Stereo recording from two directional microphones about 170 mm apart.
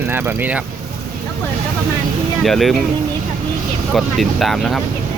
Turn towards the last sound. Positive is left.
turn(degrees=0)  # may be behind; listen again after turning